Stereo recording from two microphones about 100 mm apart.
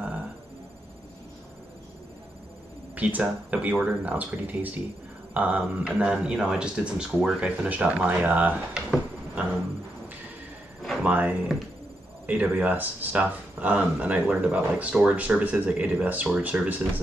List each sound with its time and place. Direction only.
2.9 s speech: 15° right (ahead or behind)
10.8 s a sound: centre (ahead or behind)
11.1 s speech: 15° right (ahead or behind)